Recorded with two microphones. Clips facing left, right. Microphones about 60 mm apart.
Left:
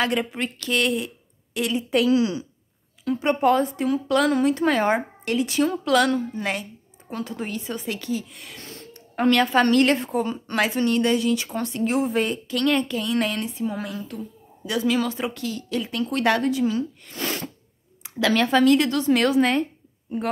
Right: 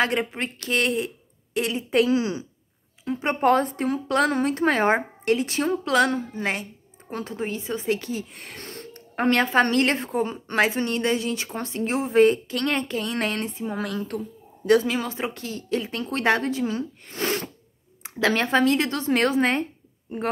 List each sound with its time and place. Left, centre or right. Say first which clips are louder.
0.0 s speech: even; right
3.4 s speech: right 1 dB; right
13.7 s a woman's voice: right 3 dB; right
14.7 s speech: right 3 dB; right